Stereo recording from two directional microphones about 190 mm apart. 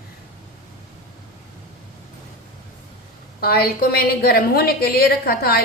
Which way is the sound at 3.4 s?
55° left (ahead or behind).